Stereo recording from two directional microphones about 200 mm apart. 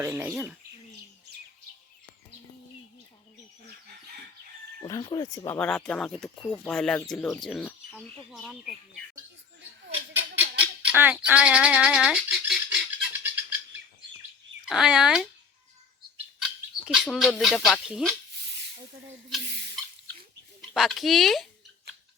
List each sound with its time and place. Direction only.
0.0 s speech: 15° right (ahead or behind)
4.8 s speech: 20° left (ahead or behind)
5.5 s speech: 5° left (ahead or behind)
10.2 s a sound: 10° right (ahead or behind)
14.7 s speech: 5° right (ahead or behind)
16.4 s speech: 5° right (ahead or behind)
20.6 s speech: centre (ahead or behind)